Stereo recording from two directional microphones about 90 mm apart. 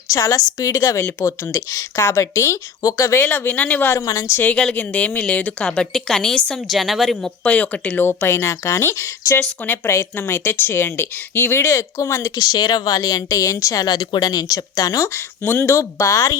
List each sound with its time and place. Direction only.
0.1 s speech: 35° left (ahead or behind)
3.2 s a woman's voice: 20° left (ahead or behind)
4.0 s speech: 35° left (ahead or behind)
4.4 s a woman's voice: 15° left (ahead or behind)
7.4 s a woman's voice: 15° left (ahead or behind); by 12.3 s 30° left (ahead or behind)
12.4 s speech: 45° left (ahead or behind)